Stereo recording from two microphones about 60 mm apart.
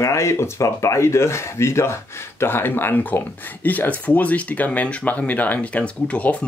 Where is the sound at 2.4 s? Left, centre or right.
Left.